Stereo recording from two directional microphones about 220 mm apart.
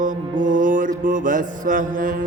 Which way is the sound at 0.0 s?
35° right (ahead or behind).